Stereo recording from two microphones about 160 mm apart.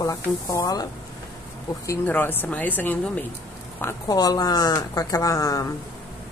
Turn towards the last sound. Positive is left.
turn(degrees=20)  # may be behind; listen again after turning